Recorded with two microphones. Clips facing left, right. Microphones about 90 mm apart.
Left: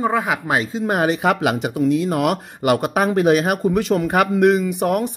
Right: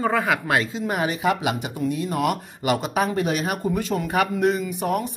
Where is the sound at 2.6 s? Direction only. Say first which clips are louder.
Left 5 dB; 55° left (ahead or behind).